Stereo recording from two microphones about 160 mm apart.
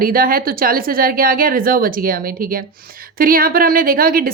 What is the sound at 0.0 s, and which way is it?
A woman's voice, 65° right (ahead or behind).